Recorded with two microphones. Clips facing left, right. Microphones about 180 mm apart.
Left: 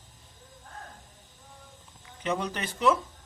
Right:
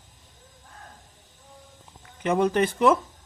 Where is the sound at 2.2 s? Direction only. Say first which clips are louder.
Right 9 dB; 50° right (ahead or behind).